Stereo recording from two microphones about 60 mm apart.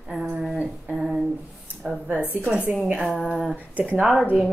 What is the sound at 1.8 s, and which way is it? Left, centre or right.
Speech, centre.